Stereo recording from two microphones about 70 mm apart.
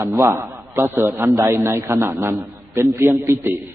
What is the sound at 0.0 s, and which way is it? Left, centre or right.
A man's voice, right.